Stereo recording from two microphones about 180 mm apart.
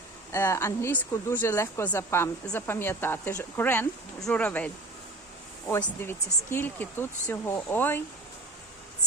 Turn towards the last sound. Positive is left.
turn(degrees=10)  # may be behind; listen again after turning